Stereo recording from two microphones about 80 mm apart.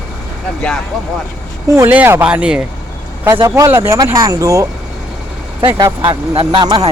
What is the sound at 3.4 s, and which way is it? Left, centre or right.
Speech, right.